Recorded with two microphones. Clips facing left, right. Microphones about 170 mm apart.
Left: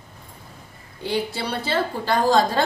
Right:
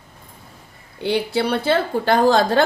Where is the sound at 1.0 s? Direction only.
65° right (ahead or behind).